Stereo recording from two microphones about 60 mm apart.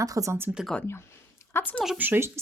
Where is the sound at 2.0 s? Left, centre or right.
Right.